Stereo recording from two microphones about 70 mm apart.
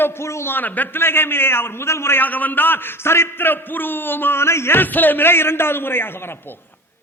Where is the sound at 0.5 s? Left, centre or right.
Left.